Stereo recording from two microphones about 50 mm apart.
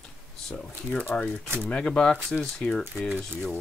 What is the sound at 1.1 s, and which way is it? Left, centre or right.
Speech, left.